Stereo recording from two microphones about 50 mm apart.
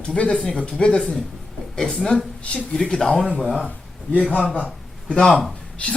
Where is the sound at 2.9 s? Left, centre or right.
Centre.